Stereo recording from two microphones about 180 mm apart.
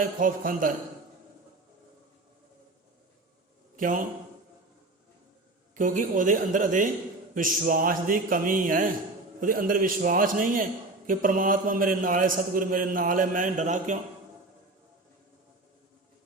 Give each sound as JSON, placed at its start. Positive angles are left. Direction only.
{"t": 0.0, "sound": "a man's voice", "side_deg": -50}
{"t": 3.8, "sound": "a man's voice", "side_deg": -50}
{"t": 5.7, "sound": "a man's voice", "side_deg": -45}